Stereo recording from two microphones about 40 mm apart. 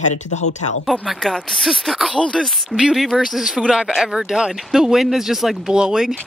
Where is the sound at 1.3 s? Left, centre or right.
Centre.